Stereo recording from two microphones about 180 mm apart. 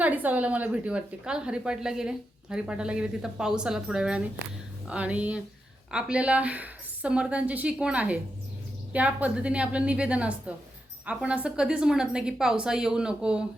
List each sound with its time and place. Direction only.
0.0 s a woman's voice: 10° right (ahead or behind)